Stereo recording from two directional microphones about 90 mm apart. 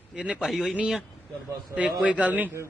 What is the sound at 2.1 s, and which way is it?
Speech, 15° right (ahead or behind).